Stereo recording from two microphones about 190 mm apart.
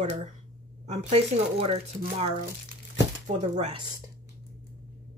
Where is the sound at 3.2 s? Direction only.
40° right (ahead or behind).